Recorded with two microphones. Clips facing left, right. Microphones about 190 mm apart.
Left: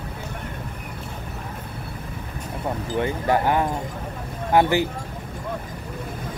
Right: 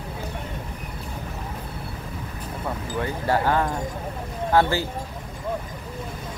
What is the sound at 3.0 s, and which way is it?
Speech, 15° left (ahead or behind).